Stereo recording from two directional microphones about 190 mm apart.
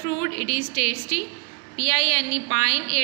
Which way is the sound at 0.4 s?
25° left (ahead or behind).